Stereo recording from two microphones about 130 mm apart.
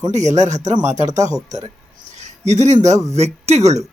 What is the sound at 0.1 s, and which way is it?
Speech, 65° right (ahead or behind).